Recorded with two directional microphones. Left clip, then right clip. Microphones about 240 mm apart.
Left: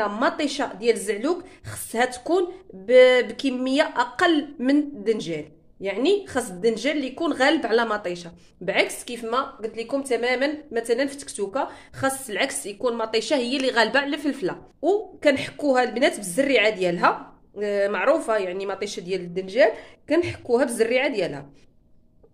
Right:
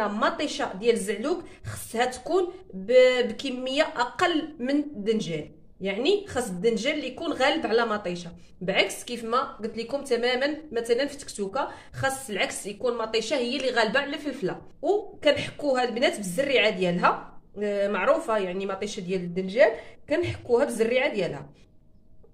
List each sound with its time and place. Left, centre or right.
0.0 s speech: left